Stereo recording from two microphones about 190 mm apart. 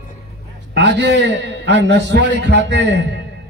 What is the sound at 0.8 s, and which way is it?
A man's voice, 65° right (ahead or behind).